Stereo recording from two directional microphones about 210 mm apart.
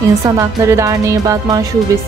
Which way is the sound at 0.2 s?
15° right (ahead or behind).